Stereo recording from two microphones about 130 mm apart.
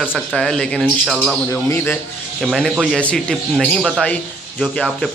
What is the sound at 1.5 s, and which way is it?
Speech, 20° left (ahead or behind).